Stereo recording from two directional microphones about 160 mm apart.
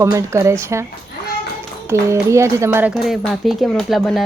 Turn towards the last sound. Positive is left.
turn(degrees=0)  # may be behind; listen again after turning